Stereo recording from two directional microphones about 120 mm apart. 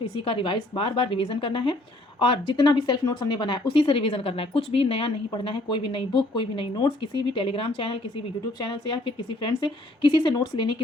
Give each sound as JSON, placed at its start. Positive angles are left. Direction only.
{"t": 0.3, "sound": "speech", "side_deg": 45}